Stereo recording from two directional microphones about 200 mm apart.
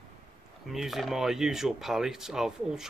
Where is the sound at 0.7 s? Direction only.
Centre (ahead or behind).